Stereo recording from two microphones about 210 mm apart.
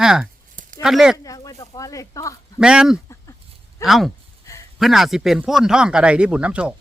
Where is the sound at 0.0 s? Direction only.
Centre (ahead or behind).